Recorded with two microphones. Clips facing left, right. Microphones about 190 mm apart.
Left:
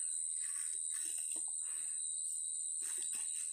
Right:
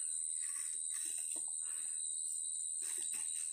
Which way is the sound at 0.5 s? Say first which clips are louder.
Left 1 dB; 5° right (ahead or behind).